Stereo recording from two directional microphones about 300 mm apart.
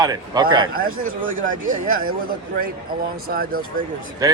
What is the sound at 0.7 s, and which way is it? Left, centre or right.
Speech, right.